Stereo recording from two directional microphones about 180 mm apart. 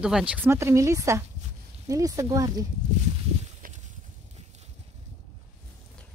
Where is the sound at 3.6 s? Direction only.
50° right (ahead or behind).